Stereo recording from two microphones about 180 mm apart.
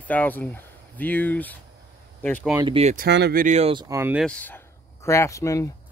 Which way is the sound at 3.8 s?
15° right (ahead or behind).